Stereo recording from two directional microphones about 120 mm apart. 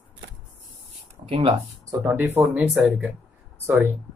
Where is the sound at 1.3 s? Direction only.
50° right (ahead or behind).